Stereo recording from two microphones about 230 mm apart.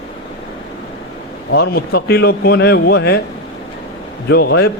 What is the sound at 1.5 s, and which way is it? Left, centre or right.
Speech, left.